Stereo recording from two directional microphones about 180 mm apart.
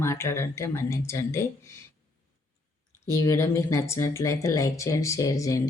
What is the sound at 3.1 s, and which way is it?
Speech, 15° left (ahead or behind).